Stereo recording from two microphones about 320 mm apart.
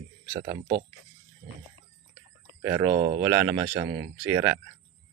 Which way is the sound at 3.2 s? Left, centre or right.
Centre.